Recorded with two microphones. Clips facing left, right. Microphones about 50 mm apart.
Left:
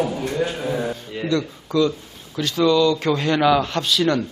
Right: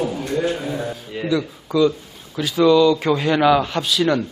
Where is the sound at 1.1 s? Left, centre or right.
Centre.